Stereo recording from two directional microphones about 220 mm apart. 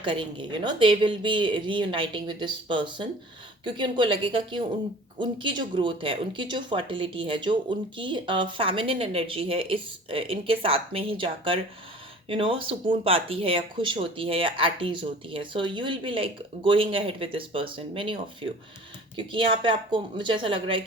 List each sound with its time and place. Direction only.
0.0 s speech: 20° right (ahead or behind)